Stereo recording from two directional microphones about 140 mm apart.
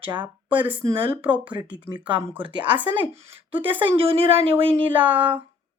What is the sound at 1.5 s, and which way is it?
Speech, 30° right (ahead or behind).